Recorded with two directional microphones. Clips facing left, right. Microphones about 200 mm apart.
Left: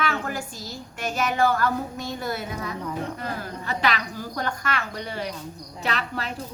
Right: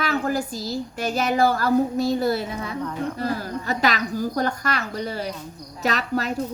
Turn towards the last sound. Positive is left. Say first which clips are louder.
# right 5 dB
turn(degrees=-40)  # may be behind; listen again after turning